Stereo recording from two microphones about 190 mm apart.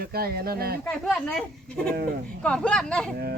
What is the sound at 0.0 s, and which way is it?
Speech, 55° right (ahead or behind).